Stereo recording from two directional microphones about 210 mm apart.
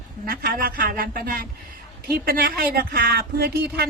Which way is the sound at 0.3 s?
45° right (ahead or behind).